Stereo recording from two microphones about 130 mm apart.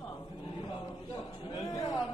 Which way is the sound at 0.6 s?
30° left (ahead or behind).